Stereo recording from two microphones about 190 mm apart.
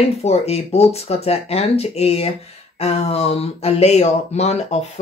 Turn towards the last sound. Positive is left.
turn(degrees=35)  # may be behind; listen again after turning